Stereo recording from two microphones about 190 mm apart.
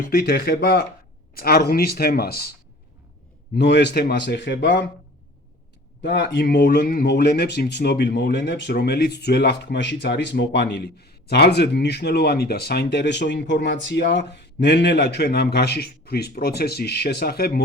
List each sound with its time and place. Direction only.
0.0 s speech: 55° left (ahead or behind)
3.5 s speech: 65° left (ahead or behind)
6.0 s speech: 65° left (ahead or behind)